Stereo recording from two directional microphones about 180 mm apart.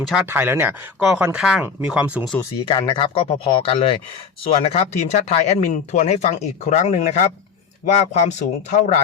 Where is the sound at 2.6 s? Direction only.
25° left (ahead or behind).